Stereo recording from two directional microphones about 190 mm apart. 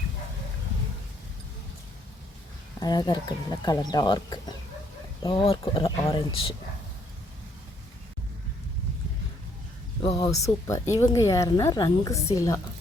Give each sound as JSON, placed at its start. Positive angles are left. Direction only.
{"t": 2.8, "sound": "speech", "side_deg": 20}
{"t": 10.0, "sound": "a woman's voice", "side_deg": 25}